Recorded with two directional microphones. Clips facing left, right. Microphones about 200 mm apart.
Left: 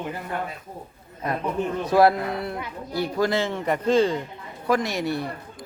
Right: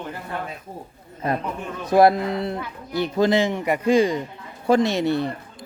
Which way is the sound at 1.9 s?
20° right (ahead or behind).